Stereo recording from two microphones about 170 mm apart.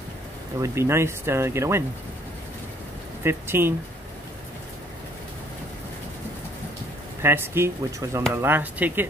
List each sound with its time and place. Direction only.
0.6 s speech: 15° right (ahead or behind)
3.3 s speech: 15° right (ahead or behind)
7.2 s speech: 15° right (ahead or behind)